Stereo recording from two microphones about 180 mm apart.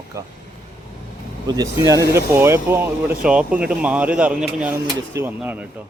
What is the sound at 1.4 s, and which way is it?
A man's voice, 20° right (ahead or behind).